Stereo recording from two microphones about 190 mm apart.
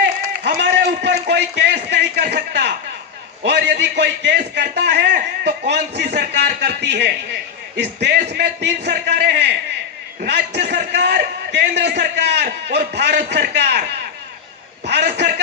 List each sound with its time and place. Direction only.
0.0 s a sound: 55° right (ahead or behind)
3.4 s a man's voice: 60° right (ahead or behind)
14.8 s a man's voice: 60° right (ahead or behind)